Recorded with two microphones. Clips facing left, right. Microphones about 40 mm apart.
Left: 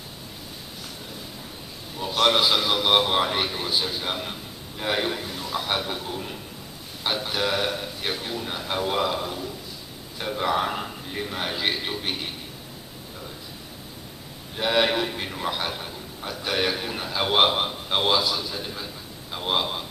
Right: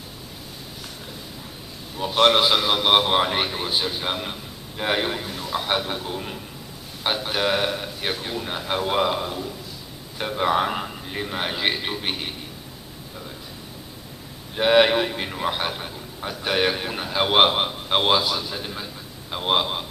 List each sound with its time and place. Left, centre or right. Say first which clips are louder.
2.0 s a man's voice: right 3 dB; centre
14.5 s a man's voice: right 5 dB; right